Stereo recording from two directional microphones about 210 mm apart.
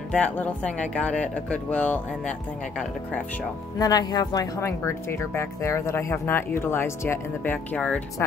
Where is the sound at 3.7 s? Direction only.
20° left (ahead or behind).